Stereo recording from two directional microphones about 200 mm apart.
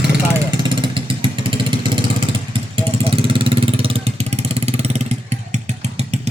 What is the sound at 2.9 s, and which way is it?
Vehicle, 30° right (ahead or behind).